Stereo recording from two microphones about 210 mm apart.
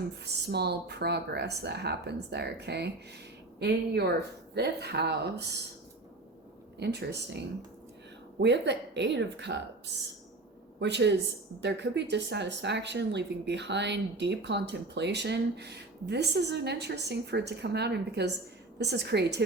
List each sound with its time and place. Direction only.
0.4 s speech: 50° right (ahead or behind)
6.7 s speech: 55° right (ahead or behind)
10.8 s speech: 55° right (ahead or behind)